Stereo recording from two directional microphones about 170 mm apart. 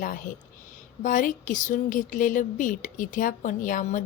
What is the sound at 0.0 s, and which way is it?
A woman's voice, 50° left (ahead or behind).